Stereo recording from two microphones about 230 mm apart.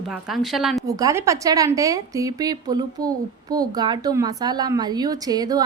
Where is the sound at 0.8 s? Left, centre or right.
Centre.